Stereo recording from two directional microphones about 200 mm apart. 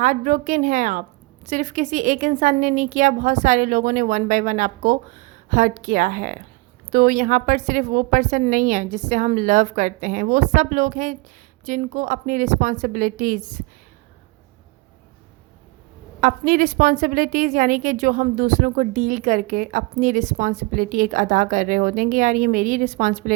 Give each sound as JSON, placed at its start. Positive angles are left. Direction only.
{"t": 0.0, "sound": "a woman's voice", "side_deg": -40}
{"t": 16.2, "sound": "a woman's voice", "side_deg": -45}